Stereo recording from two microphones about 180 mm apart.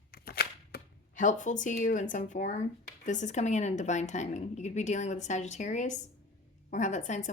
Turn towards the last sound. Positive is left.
turn(degrees=45)  # may be behind; listen again after turning